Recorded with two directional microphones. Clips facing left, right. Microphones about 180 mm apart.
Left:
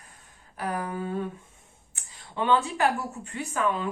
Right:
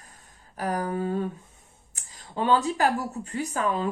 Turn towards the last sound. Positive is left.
turn(degrees=-40)  # may be behind; listen again after turning